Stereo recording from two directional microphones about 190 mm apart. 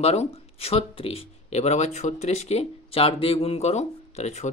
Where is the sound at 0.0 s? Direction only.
35° left (ahead or behind).